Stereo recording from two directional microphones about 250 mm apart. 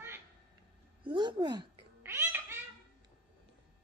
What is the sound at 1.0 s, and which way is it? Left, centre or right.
Cat, centre.